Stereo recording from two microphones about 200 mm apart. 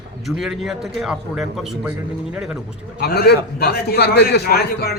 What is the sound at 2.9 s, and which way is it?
A man's voice, 50° left (ahead or behind).